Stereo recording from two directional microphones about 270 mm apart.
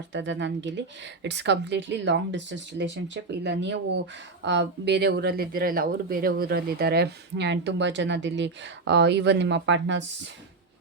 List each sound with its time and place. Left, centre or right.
0.1 s speech: right